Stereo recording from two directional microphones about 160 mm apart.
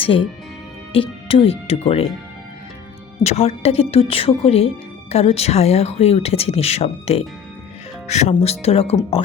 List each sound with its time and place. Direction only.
0.0 s speech: 35° left (ahead or behind)
3.2 s speech: 40° left (ahead or behind)